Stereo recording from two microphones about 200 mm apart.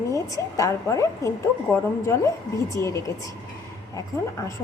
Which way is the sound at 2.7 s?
15° left (ahead or behind).